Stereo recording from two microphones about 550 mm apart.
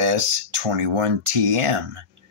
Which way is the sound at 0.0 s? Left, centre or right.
Right.